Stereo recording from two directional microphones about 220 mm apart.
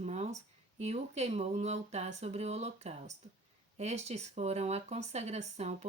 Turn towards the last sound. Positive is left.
turn(degrees=-30)  # may be behind; listen again after turning